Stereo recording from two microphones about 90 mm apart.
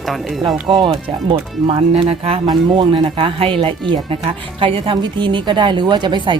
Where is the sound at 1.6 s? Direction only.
85° right.